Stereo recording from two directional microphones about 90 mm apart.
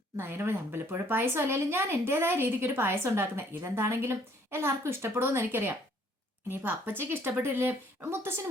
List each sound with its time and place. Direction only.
0.2 s speech: 25° right (ahead or behind)